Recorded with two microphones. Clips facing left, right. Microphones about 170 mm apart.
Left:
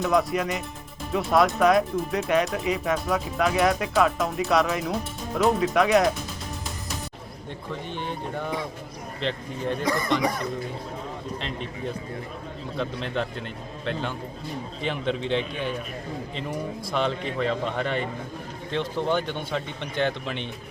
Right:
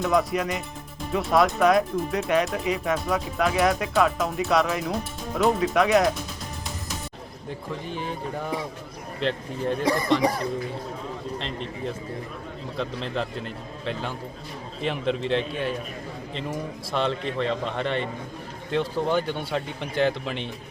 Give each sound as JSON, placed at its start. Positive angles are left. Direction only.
{"t": 0.0, "sound": "speech", "side_deg": 0}
{"t": 7.9, "sound": "speech", "side_deg": -5}
{"t": 9.8, "sound": "speech", "side_deg": -30}
{"t": 11.3, "sound": "speech", "side_deg": 0}